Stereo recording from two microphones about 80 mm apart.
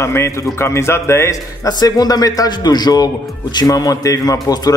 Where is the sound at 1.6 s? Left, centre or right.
Left.